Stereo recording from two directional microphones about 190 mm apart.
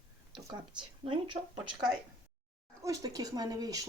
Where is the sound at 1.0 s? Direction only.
25° right (ahead or behind).